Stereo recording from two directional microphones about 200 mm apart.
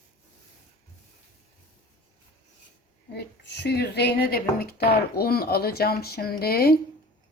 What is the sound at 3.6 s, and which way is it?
Speech, 55° left (ahead or behind).